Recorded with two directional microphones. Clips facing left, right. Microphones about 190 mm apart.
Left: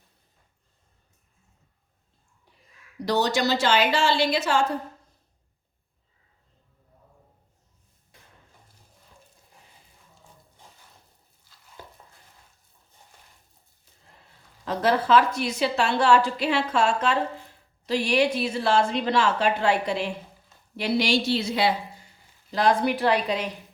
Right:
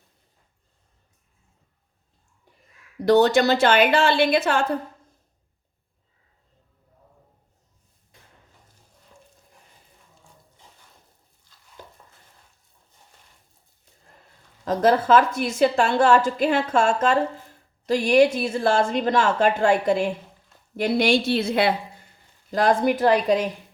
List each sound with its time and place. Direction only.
3.1 s a woman's voice: 55° right (ahead or behind)
14.1 s a woman's voice: 45° right (ahead or behind)